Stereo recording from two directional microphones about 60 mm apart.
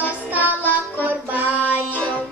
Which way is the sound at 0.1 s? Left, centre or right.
Right.